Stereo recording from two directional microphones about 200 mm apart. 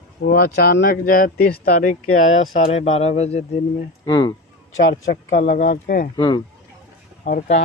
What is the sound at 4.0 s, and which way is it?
Speech, 20° left (ahead or behind).